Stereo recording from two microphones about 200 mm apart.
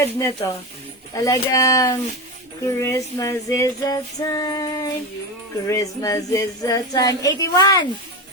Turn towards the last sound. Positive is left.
turn(degrees=20)  # may be behind; listen again after turning